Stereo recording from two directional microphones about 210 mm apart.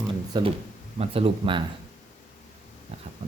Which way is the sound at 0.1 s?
25° right (ahead or behind).